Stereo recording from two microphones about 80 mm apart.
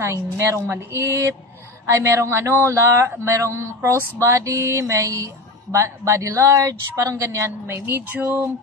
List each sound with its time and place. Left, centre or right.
0.0 s speech: right